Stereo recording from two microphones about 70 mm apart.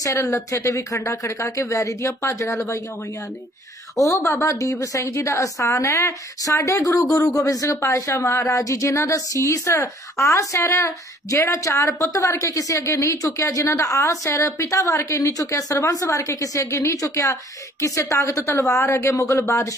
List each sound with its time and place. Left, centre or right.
0.0 s speech: left
3.9 s speech: left
19.1 s speech: left